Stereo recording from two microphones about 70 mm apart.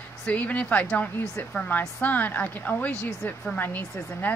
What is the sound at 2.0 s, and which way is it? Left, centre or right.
Speech, left.